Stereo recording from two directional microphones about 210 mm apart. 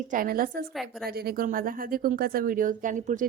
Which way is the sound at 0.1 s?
45° right (ahead or behind).